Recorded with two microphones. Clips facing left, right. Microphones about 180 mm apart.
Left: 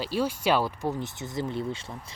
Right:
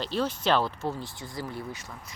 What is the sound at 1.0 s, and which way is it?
Speech, 20° left (ahead or behind).